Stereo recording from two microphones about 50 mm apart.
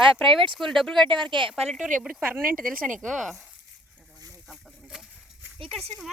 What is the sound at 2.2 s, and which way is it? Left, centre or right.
Speech, right.